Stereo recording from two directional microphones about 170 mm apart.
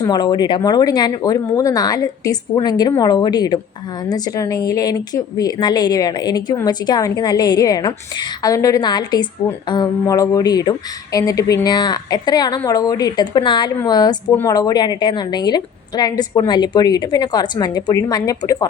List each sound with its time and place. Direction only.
0.0 s a woman's voice: 25° left (ahead or behind)